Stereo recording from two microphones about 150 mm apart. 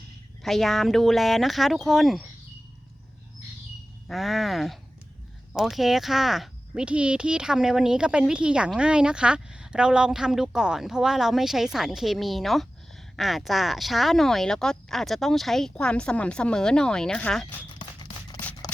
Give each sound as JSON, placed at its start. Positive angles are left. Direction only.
{"t": 0.4, "sound": "speech", "side_deg": 0}
{"t": 4.1, "sound": "speech", "side_deg": 0}
{"t": 17.7, "sound": "a sound", "side_deg": 30}